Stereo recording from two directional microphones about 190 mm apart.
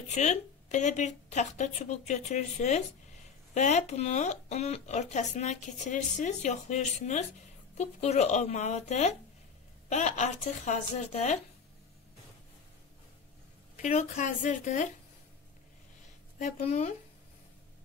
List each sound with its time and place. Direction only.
0.1 s speech: 35° left (ahead or behind)
13.7 s speech: 40° left (ahead or behind)
16.3 s speech: 40° left (ahead or behind)